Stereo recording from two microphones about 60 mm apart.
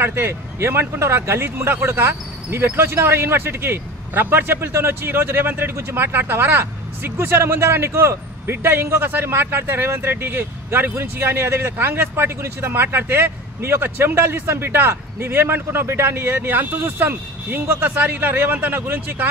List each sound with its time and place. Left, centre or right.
0.0 s speech: right